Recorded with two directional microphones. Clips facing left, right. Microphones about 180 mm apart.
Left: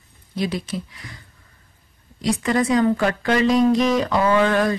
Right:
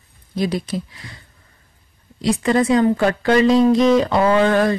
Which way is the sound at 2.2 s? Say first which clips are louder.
Right 3 dB; 25° right (ahead or behind).